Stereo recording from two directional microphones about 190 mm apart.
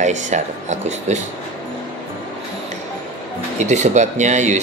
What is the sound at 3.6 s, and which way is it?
Speech, 40° right (ahead or behind).